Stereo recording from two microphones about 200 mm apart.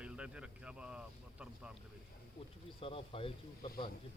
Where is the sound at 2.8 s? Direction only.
25° left (ahead or behind).